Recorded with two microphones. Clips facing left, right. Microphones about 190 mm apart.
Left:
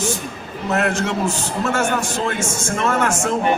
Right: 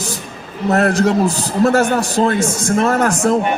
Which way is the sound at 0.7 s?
35° right (ahead or behind).